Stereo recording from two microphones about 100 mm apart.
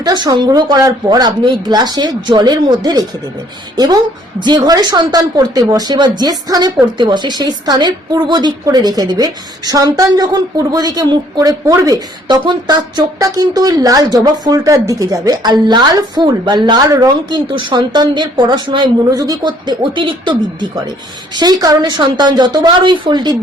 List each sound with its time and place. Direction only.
0.0 s a woman's voice: 45° right (ahead or behind)
19.1 s speech: 40° right (ahead or behind); by 20.7 s 55° right (ahead or behind)
21.3 s speech: 40° right (ahead or behind)